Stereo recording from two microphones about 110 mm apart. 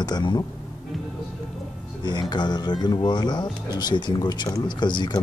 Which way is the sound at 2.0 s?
45° left (ahead or behind).